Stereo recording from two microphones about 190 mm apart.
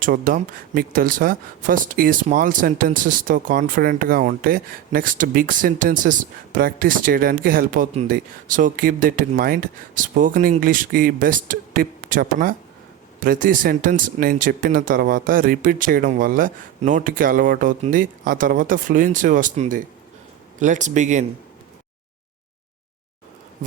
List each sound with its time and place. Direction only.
0.0 s speech: 45° right (ahead or behind)